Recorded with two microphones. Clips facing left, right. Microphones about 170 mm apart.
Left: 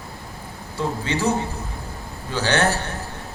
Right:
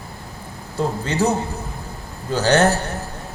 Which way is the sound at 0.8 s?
40° right (ahead or behind).